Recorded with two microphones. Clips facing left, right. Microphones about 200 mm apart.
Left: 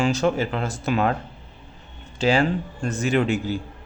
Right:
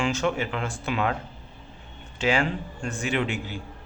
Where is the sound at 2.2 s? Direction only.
35° left (ahead or behind).